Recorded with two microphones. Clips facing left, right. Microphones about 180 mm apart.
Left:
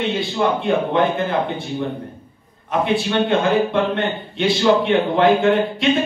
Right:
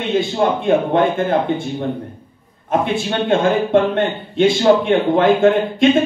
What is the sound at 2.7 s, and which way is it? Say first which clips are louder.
A man's voice: even; 50° right (ahead or behind).